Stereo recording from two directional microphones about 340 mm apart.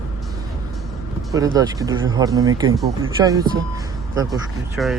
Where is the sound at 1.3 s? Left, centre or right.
Centre.